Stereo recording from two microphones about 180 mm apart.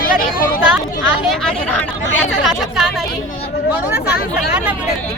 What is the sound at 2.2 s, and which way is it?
Speech, centre (ahead or behind).